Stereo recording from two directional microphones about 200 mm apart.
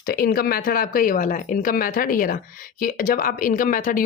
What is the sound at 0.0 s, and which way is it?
Speech, 50° left (ahead or behind).